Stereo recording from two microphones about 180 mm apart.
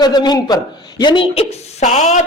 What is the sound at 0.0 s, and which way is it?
Speech, 25° left (ahead or behind).